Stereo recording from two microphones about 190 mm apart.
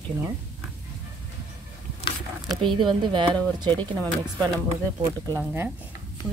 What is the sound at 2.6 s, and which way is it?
Speech, 25° right (ahead or behind).